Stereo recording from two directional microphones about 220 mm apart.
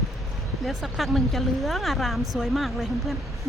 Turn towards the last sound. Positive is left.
turn(degrees=0)  # may be behind; listen again after turning